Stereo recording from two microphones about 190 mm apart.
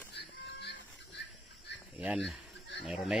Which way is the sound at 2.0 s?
5° right (ahead or behind).